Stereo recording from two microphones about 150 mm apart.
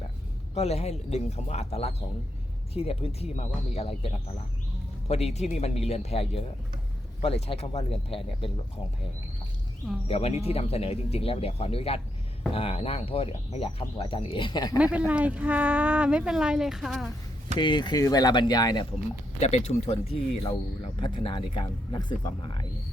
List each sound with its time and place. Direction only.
0.5 s a man's voice: 45° left (ahead or behind)
10.1 s speech: 40° left (ahead or behind); by 14.8 s 25° left (ahead or behind)
14.8 s speech: 10° right (ahead or behind)
17.6 s speech: 30° left (ahead or behind)
19.4 s a man's voice: 50° left (ahead or behind)
21.0 s speech: 35° left (ahead or behind)